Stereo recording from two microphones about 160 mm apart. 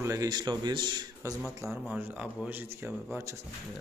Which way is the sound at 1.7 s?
5° right (ahead or behind).